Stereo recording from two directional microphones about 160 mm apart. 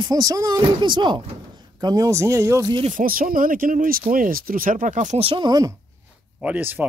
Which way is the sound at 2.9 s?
60° right (ahead or behind).